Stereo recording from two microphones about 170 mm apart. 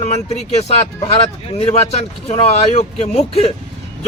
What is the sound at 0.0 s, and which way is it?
Speech, 40° left (ahead or behind).